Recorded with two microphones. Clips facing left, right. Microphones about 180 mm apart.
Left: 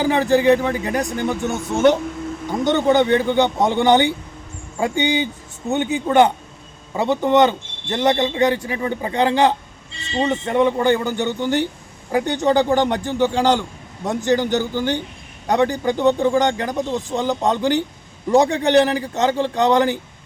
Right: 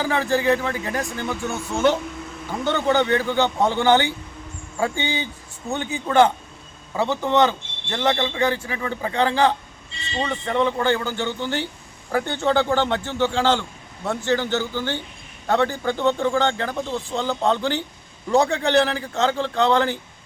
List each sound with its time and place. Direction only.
0.0 s a man's voice: 20° left (ahead or behind)